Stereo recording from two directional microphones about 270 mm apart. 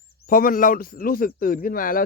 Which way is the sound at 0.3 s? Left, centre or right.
Left.